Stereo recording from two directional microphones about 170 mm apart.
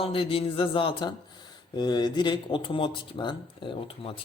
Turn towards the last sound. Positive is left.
turn(degrees=30)  # may be behind; listen again after turning